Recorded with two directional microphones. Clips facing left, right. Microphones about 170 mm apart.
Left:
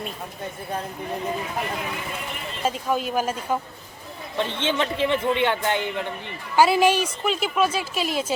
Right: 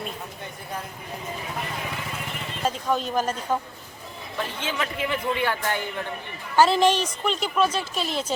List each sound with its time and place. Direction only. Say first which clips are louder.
2.6 s a woman's voice: left 1 dB; 10° left (ahead or behind)
4.4 s speech: left 5 dB; 30° left (ahead or behind)
6.6 s a woman's voice: left 1 dB; 10° left (ahead or behind)